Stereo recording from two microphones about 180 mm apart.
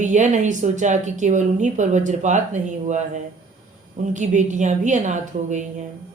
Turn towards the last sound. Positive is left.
turn(degrees=-40)  # may be behind; listen again after turning